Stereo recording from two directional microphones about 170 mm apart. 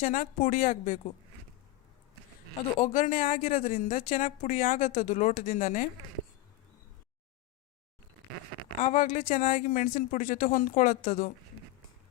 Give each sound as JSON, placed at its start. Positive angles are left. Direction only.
{"t": 0.0, "sound": "a woman's voice", "side_deg": 50}
{"t": 2.8, "sound": "a woman's voice", "side_deg": 45}
{"t": 8.8, "sound": "a woman's voice", "side_deg": 45}